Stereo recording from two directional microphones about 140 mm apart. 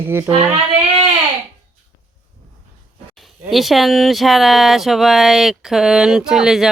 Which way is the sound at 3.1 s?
Centre (ahead or behind).